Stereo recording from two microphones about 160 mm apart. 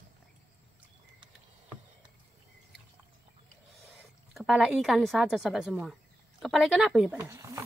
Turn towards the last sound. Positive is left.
turn(degrees=-20)  # may be behind; listen again after turning